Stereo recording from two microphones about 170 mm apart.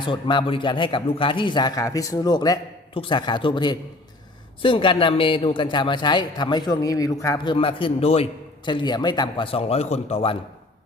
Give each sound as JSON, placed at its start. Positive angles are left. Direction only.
{"t": 0.0, "sound": "a man's voice", "side_deg": 25}